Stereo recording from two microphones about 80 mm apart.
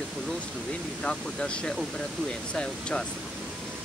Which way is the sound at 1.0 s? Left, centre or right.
Centre.